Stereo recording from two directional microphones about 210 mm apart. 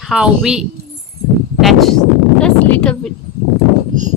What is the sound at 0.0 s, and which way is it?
Speech, centre (ahead or behind).